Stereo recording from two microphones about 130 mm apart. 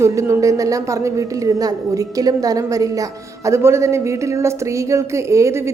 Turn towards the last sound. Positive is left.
turn(degrees=-20)  # may be behind; listen again after turning